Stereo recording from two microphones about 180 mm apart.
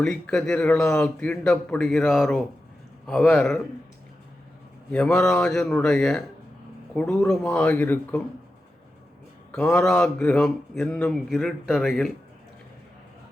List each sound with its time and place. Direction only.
0.0 s speech: 5° left (ahead or behind)
4.9 s speech: 5° left (ahead or behind)
9.5 s speech: 10° left (ahead or behind)